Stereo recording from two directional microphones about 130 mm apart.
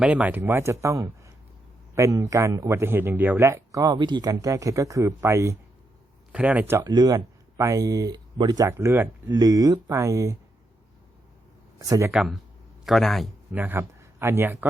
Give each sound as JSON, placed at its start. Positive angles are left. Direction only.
{"t": 0.0, "sound": "speech", "side_deg": -10}
{"t": 6.3, "sound": "speech", "side_deg": -10}
{"t": 6.8, "sound": "speech", "side_deg": -30}
{"t": 9.3, "sound": "speech", "side_deg": -30}
{"t": 11.8, "sound": "speech", "side_deg": -25}
{"t": 12.1, "sound": "a man's voice", "side_deg": -5}
{"t": 13.5, "sound": "speech", "side_deg": -15}